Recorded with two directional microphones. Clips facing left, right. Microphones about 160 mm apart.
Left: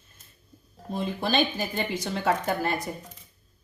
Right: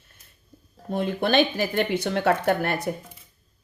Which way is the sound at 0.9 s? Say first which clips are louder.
Right 5 dB; 65° right (ahead or behind).